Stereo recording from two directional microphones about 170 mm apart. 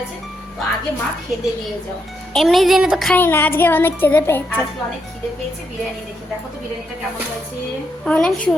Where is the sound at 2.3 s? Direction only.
Centre (ahead or behind).